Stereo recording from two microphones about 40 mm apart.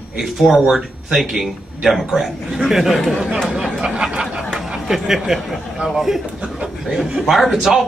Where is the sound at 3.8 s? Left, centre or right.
Right.